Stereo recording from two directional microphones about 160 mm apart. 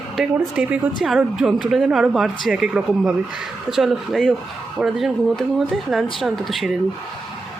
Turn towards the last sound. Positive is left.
turn(degrees=0)  # may be behind; listen again after turning